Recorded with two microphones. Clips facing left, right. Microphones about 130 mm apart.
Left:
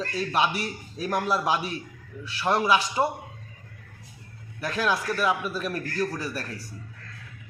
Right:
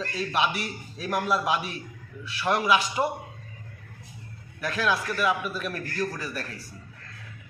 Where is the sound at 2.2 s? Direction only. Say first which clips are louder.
Left 1 dB; 30° left (ahead or behind).